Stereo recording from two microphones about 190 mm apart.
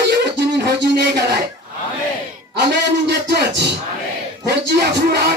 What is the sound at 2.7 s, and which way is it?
Speech, 60° right (ahead or behind).